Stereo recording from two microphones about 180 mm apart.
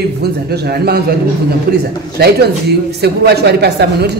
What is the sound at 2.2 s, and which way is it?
Speech, 65° right (ahead or behind).